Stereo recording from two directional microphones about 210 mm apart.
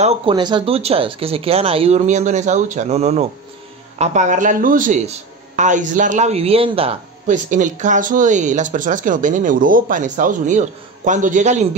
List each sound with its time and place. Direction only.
0.0 s speech: 25° right (ahead or behind)